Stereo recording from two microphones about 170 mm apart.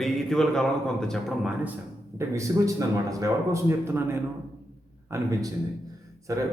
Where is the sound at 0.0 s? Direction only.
Centre (ahead or behind).